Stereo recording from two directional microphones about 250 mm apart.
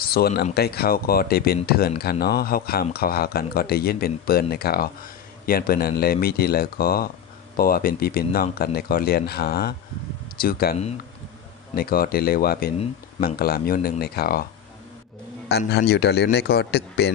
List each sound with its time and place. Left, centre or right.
0.0 s speech: left
15.4 s speech: left